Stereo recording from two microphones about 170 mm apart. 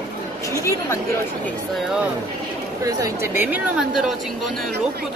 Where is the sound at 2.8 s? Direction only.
20° right (ahead or behind).